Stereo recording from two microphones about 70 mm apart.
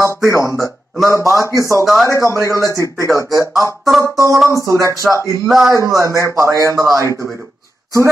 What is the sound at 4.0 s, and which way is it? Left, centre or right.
A man's voice, right.